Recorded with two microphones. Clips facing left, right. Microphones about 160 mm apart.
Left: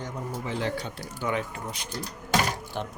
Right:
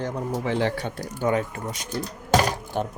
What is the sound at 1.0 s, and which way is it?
Speech, 45° right (ahead or behind).